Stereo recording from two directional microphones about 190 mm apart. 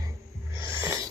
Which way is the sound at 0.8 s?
15° right (ahead or behind).